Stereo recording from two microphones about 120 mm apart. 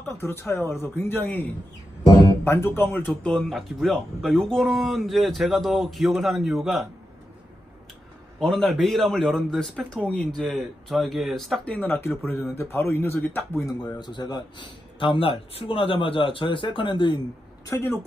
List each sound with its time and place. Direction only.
0.0 s speech: 20° left (ahead or behind)
2.4 s speech: 20° left (ahead or behind)
3.1 s speech: 5° left (ahead or behind)
8.4 s speech: 5° left (ahead or behind)
13.7 s a man's voice: 35° left (ahead or behind)
17.6 s speech: 20° left (ahead or behind)